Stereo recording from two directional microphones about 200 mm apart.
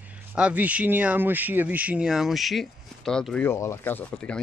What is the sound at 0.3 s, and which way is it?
Speech, 5° right (ahead or behind).